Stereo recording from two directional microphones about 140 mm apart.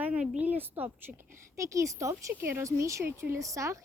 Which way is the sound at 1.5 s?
20° right (ahead or behind).